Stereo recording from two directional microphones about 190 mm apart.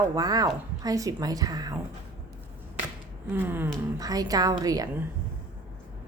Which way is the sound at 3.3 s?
10° right (ahead or behind).